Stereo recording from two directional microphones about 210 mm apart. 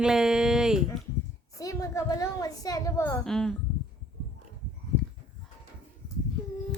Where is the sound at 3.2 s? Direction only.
5° left (ahead or behind).